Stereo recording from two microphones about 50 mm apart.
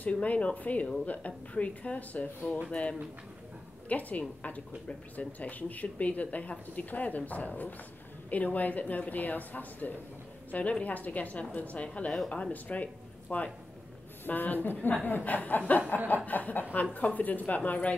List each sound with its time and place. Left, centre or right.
0.0 s speech: left